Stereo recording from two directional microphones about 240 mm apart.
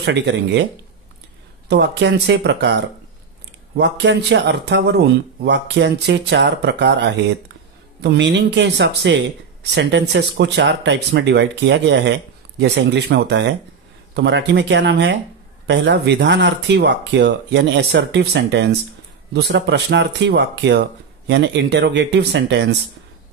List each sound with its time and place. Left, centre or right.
0.0 s speech: right
1.7 s speech: right